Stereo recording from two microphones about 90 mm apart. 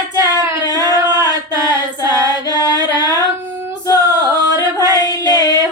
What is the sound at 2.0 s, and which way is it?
Female singing, 45° left (ahead or behind).